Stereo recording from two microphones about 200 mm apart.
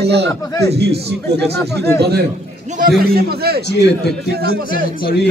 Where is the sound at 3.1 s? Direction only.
50° right (ahead or behind).